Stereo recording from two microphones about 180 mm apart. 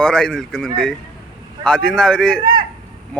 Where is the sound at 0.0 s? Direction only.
5° left (ahead or behind).